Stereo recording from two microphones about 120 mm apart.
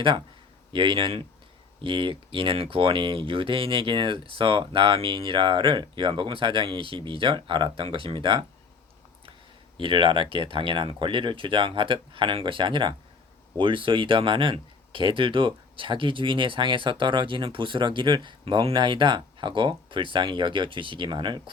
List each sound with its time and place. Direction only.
0.7 s speech: 45° right (ahead or behind)
9.7 s speech: 45° right (ahead or behind)